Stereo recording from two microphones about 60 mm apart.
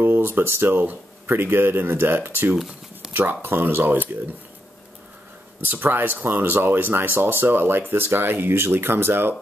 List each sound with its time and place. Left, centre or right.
0.0 s speech: right
2.5 s shuffling cards: centre
3.1 s speech: right
5.6 s speech: right